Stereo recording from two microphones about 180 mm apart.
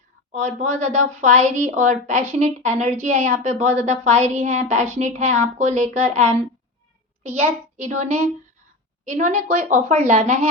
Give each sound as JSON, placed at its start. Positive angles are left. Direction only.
{"t": 0.3, "sound": "a woman's voice", "side_deg": -40}
{"t": 7.2, "sound": "a woman's voice", "side_deg": -40}